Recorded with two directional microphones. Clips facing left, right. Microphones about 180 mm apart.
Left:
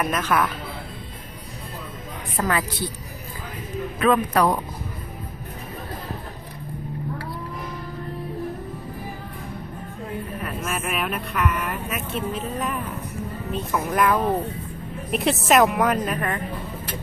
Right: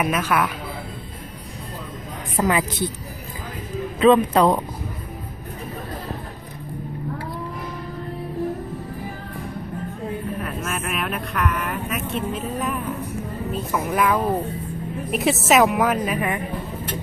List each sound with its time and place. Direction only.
0.0 s a woman's voice: 5° right (ahead or behind)
2.4 s speech: 20° right (ahead or behind)
4.0 s speech: 25° right (ahead or behind)
10.4 s speech: centre (ahead or behind)